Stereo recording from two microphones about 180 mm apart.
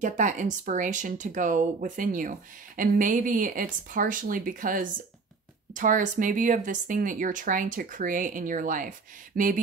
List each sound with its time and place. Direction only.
0.0 s speech: 45° right (ahead or behind)